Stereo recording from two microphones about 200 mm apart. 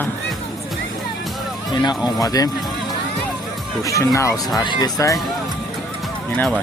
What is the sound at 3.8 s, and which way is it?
Speech, 15° left (ahead or behind).